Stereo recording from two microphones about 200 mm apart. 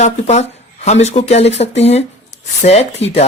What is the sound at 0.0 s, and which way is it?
Speech, 35° left (ahead or behind).